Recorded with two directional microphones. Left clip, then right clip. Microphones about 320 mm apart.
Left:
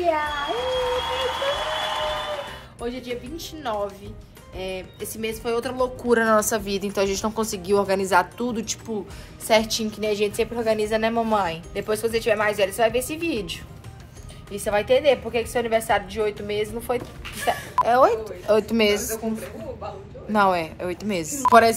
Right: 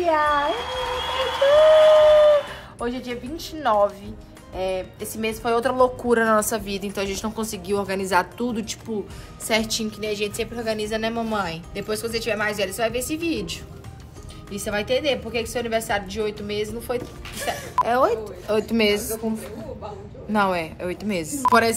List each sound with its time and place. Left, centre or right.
0.7 s a sound: centre
2.8 s a woman's voice: centre
17.7 s speech: centre
20.3 s speech: centre